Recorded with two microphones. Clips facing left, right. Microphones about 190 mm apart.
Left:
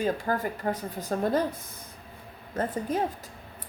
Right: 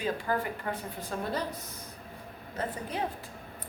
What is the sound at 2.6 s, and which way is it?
Speech, 45° left (ahead or behind).